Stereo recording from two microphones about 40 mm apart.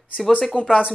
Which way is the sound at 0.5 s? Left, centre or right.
Left.